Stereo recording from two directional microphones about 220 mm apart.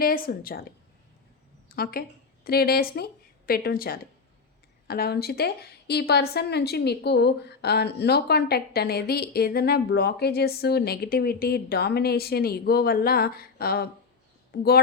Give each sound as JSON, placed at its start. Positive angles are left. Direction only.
{"t": 0.0, "sound": "a woman's voice", "side_deg": 40}
{"t": 1.7, "sound": "a woman's voice", "side_deg": 45}